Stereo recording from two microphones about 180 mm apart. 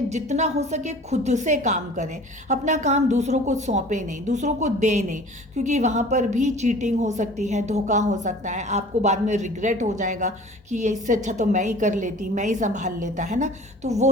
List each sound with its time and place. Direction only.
0.1 s a woman's voice: 40° right (ahead or behind)